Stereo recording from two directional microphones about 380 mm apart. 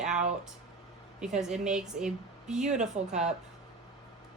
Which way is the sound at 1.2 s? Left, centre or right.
Centre.